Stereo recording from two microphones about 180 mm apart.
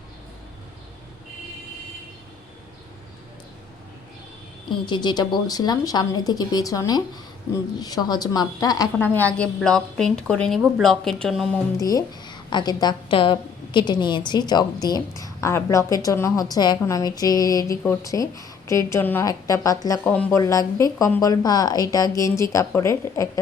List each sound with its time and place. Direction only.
4.9 s a woman's voice: 25° left (ahead or behind)
9.0 s a woman's voice: 10° left (ahead or behind)
11.8 s a woman's voice: 20° left (ahead or behind)
20.1 s speech: 5° left (ahead or behind)
20.4 s a woman's voice: 20° left (ahead or behind)